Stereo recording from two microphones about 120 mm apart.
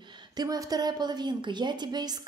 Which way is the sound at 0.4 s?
30° right (ahead or behind).